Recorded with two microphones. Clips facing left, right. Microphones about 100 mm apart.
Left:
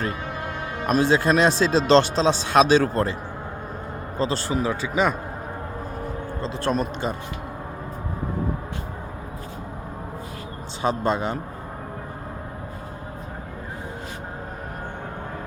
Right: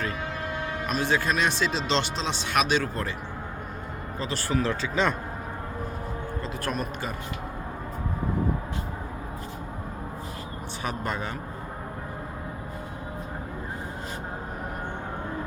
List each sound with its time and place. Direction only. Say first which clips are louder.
0.9 s speech: left 7 dB; 35° left (ahead or behind)
4.2 s speech: left 4 dB; 30° left (ahead or behind); by 5.1 s 10° left (ahead or behind)
6.4 s a man's voice: left 8 dB; 25° left (ahead or behind)
10.8 s a man's voice: left 9 dB; 25° left (ahead or behind)